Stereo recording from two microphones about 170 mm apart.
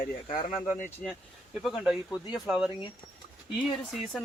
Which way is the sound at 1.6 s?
Centre (ahead or behind).